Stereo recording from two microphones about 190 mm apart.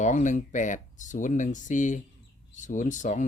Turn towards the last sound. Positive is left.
turn(degrees=40)  # may be behind; listen again after turning